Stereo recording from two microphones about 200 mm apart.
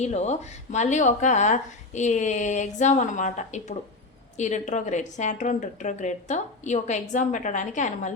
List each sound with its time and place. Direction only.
0.0 s speech: 35° left (ahead or behind)